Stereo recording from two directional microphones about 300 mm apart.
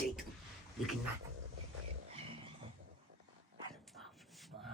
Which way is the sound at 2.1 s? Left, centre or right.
Centre.